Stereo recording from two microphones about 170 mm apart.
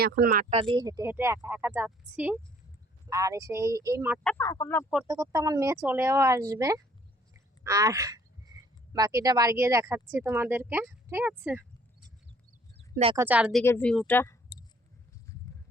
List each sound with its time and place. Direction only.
0.0 s speech: 60° right (ahead or behind)
0.5 s speech: 30° right (ahead or behind); by 2.4 s 10° right (ahead or behind)
3.1 s speech: 20° right (ahead or behind)
4.4 s speech: 20° left (ahead or behind)
5.0 s speech: 20° right (ahead or behind)
13.1 s speech: 10° right (ahead or behind)
13.7 s speech: 10° left (ahead or behind)